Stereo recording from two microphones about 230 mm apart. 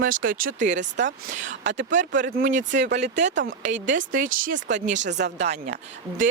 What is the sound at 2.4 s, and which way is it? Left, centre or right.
Speech, right.